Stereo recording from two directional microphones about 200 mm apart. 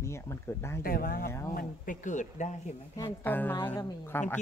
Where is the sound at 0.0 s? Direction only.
15° left (ahead or behind).